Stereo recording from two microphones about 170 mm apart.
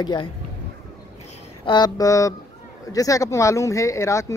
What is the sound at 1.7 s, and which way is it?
Speech, 25° left (ahead or behind).